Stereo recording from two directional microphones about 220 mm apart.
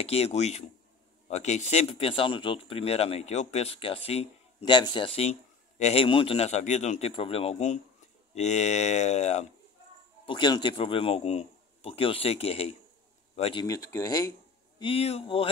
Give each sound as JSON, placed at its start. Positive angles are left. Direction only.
{"t": 0.0, "sound": "speech", "side_deg": 25}
{"t": 10.2, "sound": "speech", "side_deg": 20}
{"t": 14.8, "sound": "speech", "side_deg": 25}